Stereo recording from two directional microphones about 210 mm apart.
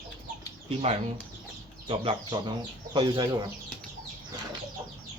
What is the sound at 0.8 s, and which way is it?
Speech, 30° right (ahead or behind).